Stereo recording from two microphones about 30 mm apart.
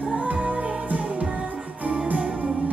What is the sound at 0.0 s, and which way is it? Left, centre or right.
Music, right.